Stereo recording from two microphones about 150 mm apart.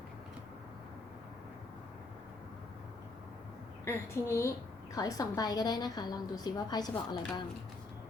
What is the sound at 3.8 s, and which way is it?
A woman's voice, 20° left (ahead or behind).